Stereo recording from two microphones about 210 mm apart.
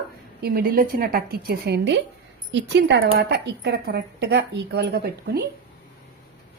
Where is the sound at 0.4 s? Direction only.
45° right (ahead or behind).